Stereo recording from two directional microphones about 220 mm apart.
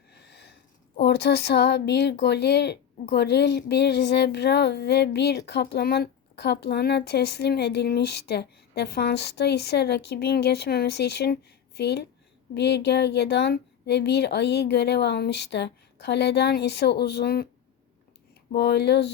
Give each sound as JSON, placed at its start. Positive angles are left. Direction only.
{"t": 0.3, "sound": "a sound", "side_deg": 50}
{"t": 1.0, "sound": "speech", "side_deg": 50}
{"t": 18.5, "sound": "speech", "side_deg": 50}